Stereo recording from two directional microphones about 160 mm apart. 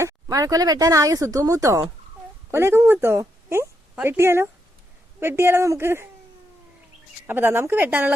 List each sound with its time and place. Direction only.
0.0 s a woman's voice: 20° right (ahead or behind)
7.3 s a woman's voice: 15° right (ahead or behind)